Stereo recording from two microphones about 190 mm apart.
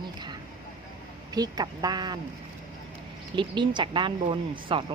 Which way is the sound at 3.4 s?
25° right (ahead or behind).